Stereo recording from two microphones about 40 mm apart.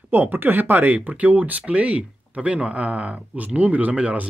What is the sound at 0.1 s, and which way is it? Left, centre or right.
Speech, right.